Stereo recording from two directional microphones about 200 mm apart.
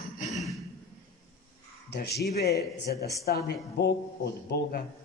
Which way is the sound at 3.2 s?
50° left (ahead or behind).